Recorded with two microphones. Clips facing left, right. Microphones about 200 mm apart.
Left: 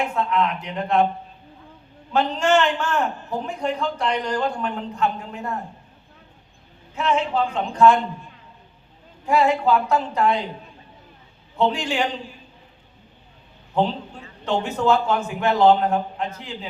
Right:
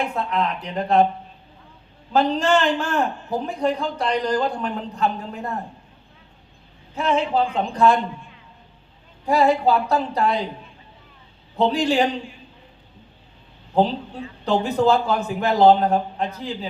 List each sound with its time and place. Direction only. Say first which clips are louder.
0.2 s a man's voice: left 2 dB; 35° right (ahead or behind)
2.1 s a man's voice: right 1 dB; 35° right (ahead or behind)
6.9 s a man's voice: right 1 dB; 35° right (ahead or behind)
9.2 s a man's voice: right 1 dB; 35° right (ahead or behind)
11.5 s a man's voice: right 3 dB; 35° right (ahead or behind)
13.7 s a man's voice: right 3 dB; 35° right (ahead or behind)